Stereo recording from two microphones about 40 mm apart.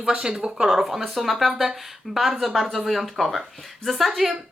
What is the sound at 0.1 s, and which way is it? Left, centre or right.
Speech, right.